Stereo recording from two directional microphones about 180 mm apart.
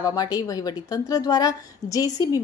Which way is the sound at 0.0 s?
20° left (ahead or behind).